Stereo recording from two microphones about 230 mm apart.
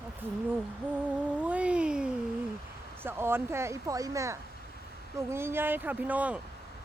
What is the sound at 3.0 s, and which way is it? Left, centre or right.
Speech, centre.